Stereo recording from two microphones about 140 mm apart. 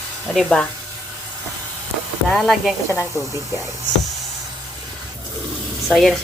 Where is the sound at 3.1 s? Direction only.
20° right (ahead or behind).